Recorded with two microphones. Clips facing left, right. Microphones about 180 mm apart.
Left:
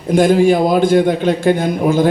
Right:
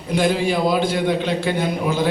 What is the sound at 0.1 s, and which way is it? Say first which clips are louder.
A man's voice: left 8 dB; 50° left (ahead or behind).